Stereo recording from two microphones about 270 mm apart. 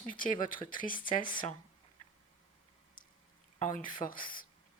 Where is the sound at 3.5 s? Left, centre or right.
Left.